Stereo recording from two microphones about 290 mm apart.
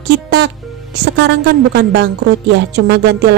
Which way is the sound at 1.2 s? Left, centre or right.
Right.